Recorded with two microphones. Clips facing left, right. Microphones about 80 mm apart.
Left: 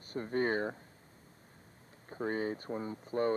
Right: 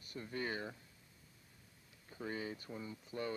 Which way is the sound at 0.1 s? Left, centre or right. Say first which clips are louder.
Left 10 dB; left.